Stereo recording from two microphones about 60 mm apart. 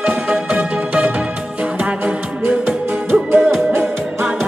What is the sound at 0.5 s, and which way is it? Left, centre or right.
Music, centre.